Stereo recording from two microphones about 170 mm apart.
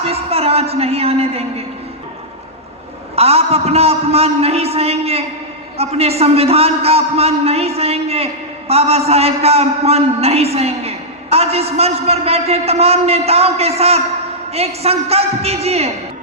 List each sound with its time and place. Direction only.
0.0 s a man's voice: 35° right (ahead or behind)
3.2 s a man's voice: 35° right (ahead or behind)